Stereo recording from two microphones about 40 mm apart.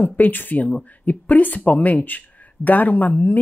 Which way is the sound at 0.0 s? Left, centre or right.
Left.